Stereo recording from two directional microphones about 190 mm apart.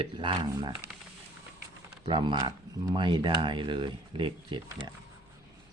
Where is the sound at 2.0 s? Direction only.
25° right (ahead or behind).